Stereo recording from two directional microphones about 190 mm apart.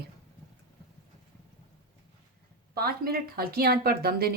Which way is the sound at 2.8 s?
55° right (ahead or behind).